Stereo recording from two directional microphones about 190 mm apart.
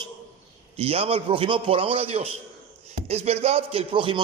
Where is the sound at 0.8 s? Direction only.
30° right (ahead or behind).